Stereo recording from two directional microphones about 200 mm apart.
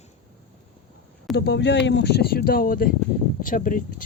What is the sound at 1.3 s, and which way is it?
Speech, 55° left (ahead or behind).